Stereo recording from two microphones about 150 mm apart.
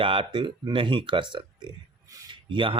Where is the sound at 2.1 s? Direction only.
30° right (ahead or behind).